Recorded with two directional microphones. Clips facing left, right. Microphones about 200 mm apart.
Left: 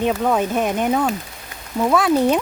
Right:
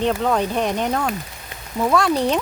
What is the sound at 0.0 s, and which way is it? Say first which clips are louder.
Speech: left 1 dB; 10° left (ahead or behind).